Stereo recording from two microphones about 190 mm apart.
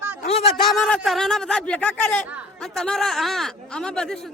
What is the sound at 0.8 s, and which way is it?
Speech, centre (ahead or behind).